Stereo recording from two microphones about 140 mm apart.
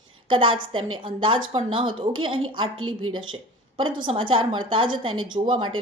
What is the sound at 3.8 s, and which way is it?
A woman's voice, 35° right (ahead or behind).